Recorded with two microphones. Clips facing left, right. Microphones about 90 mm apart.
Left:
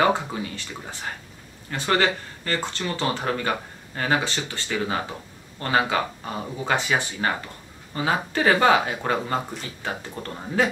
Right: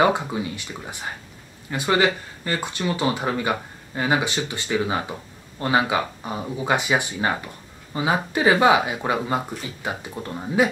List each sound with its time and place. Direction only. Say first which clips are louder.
0.0 s speech: right 2 dB; 15° right (ahead or behind)